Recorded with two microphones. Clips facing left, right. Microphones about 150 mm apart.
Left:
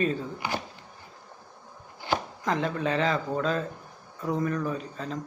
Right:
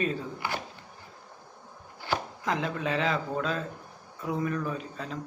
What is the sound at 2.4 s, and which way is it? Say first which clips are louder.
Speech: left 3 dB; 5° right (ahead or behind).